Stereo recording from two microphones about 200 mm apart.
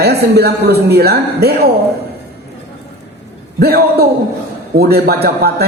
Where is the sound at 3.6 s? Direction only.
50° right (ahead or behind).